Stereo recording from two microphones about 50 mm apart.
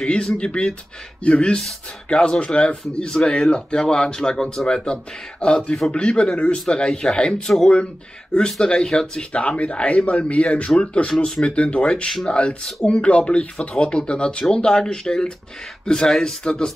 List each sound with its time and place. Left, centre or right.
0.0 s speech: centre
9.4 s speech: left